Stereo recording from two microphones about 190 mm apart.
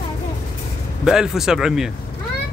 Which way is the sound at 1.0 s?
Centre (ahead or behind).